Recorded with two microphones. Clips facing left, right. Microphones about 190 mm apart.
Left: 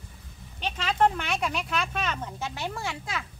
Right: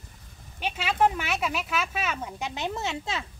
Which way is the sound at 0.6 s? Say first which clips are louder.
Even; 10° right (ahead or behind).